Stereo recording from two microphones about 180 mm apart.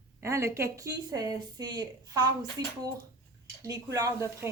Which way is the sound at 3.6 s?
20° right (ahead or behind).